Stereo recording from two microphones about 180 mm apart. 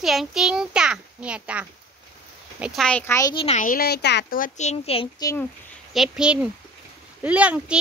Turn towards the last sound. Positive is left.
turn(degrees=-10)  # may be behind; listen again after turning